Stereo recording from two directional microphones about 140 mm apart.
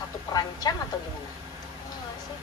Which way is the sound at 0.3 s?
30° left (ahead or behind).